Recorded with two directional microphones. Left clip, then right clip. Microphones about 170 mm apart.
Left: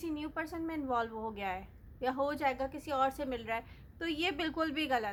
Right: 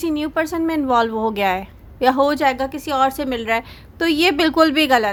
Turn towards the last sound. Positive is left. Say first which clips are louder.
# right 18 dB
turn(degrees=-40)  # may be behind; listen again after turning